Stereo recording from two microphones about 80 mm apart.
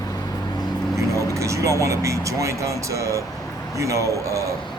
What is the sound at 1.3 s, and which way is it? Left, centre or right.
A man's voice, right.